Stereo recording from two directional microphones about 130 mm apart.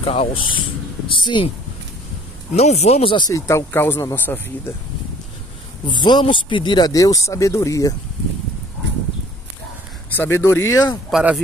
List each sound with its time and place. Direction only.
0.0 s speech: 50° left (ahead or behind)
2.5 s speech: 55° left (ahead or behind)
3.3 s speech: 25° left (ahead or behind)
5.9 s speech: 35° left (ahead or behind)
10.0 s speech: 15° left (ahead or behind)
11.1 s speech: centre (ahead or behind)